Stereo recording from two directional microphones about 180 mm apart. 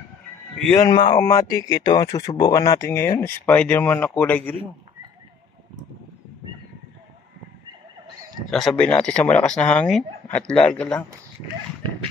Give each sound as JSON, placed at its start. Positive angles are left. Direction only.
{"t": 0.7, "sound": "speech", "side_deg": 20}
{"t": 8.5, "sound": "speech", "side_deg": 0}